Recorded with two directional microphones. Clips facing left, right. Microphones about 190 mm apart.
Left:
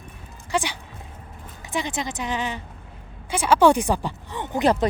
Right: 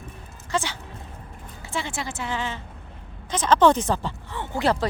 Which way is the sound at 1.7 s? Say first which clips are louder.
Left 3 dB; 20° left (ahead or behind).